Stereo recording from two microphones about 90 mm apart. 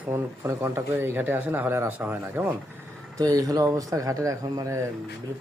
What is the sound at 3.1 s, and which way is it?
Speech, 40° right (ahead or behind).